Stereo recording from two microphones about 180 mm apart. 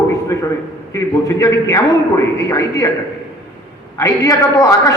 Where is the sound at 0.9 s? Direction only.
20° left (ahead or behind).